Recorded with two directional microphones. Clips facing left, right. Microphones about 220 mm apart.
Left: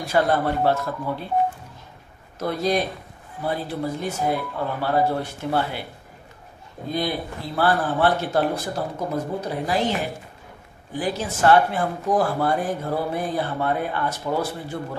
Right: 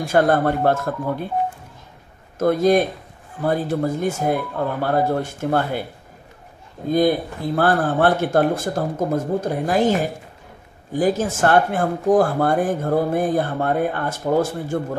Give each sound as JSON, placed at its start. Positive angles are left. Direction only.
{"t": 0.0, "sound": "speech", "side_deg": -50}
{"t": 2.3, "sound": "speech", "side_deg": -50}
{"t": 6.9, "sound": "speech", "side_deg": -45}